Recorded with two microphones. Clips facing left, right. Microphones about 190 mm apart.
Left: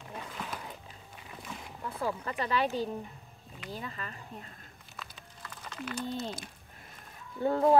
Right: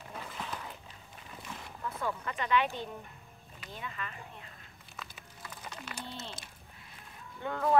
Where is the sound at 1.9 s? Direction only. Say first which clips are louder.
Left 2 dB; 35° left (ahead or behind).